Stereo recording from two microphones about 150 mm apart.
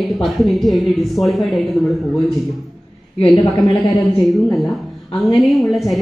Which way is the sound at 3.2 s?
30° left (ahead or behind).